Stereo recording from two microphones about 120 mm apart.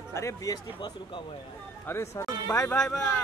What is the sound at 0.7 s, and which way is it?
Speech, 40° left (ahead or behind).